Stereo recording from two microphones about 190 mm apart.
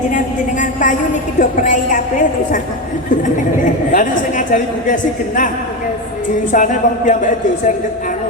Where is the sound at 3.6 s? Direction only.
45° left (ahead or behind).